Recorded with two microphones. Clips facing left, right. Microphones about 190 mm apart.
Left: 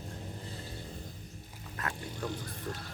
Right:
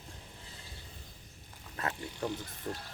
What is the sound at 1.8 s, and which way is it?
Speech, 20° right (ahead or behind).